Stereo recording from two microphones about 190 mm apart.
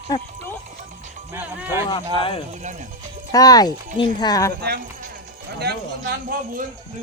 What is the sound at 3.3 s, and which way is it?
Speech, 20° left (ahead or behind).